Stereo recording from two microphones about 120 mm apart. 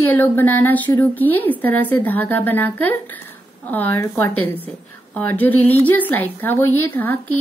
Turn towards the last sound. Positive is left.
turn(degrees=15)  # may be behind; listen again after turning